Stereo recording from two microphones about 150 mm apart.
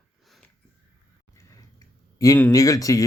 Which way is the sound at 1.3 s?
20° left (ahead or behind).